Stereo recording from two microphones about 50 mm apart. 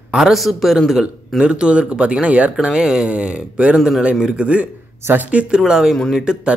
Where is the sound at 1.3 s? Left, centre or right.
Centre.